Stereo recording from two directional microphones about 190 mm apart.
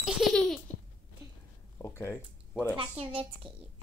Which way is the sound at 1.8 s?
10° left (ahead or behind).